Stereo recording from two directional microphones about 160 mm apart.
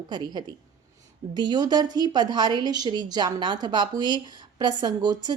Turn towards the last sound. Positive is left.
turn(degrees=-25)  # may be behind; listen again after turning